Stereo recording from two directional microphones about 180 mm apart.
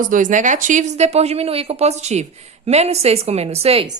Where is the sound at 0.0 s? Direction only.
45° right (ahead or behind).